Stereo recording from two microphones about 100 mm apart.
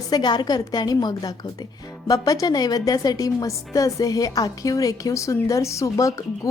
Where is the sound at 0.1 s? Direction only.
45° left (ahead or behind).